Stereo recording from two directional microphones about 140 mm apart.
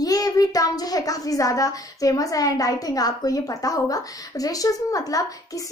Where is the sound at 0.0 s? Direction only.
25° left (ahead or behind).